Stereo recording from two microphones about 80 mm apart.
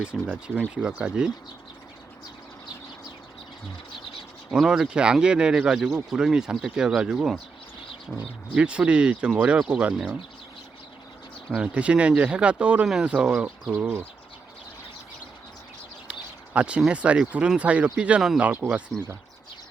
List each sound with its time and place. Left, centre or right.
0.0 s speech: centre
4.5 s speech: centre
8.5 s speech: centre
11.5 s speech: centre
13.7 s speech: right
16.0 s a sound: centre
16.8 s speech: centre